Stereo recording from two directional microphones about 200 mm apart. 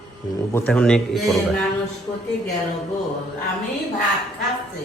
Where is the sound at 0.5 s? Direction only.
5° left (ahead or behind).